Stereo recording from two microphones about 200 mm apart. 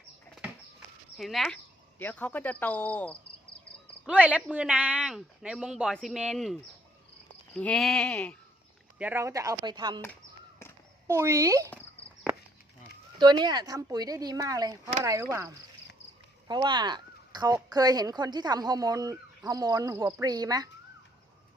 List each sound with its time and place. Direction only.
1.1 s speech: centre (ahead or behind)
4.0 s speech: 5° right (ahead or behind)
9.0 s speech: 10° right (ahead or behind)
11.1 s speech: 15° right (ahead or behind)
13.1 s speech: 20° right (ahead or behind)